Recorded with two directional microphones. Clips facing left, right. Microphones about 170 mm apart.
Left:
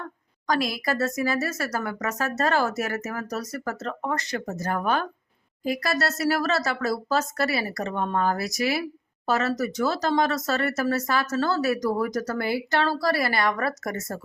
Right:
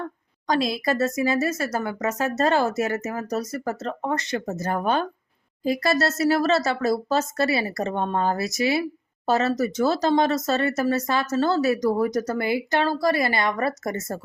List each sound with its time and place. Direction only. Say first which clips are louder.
0.4 s speech: right 3 dB; 25° right (ahead or behind)